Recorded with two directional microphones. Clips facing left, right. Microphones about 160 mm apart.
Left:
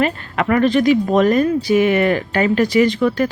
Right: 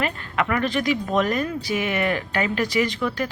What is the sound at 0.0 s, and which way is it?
Speech, 40° left (ahead or behind).